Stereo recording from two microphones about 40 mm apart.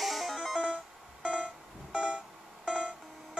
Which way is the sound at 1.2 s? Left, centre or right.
Right.